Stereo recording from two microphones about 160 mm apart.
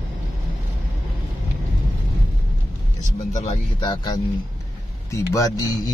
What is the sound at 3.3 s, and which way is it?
Speech, 45° left (ahead or behind).